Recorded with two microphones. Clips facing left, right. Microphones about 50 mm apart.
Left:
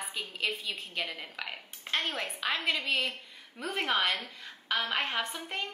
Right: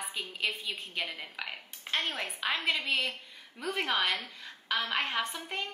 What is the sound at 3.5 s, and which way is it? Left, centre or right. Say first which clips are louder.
Speech: left 1 dB; left.